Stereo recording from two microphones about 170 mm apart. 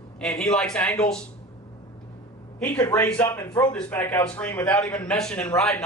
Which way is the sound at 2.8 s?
20° left (ahead or behind).